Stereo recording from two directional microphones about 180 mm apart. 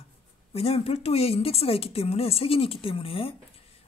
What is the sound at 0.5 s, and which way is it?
Speech, 35° left (ahead or behind).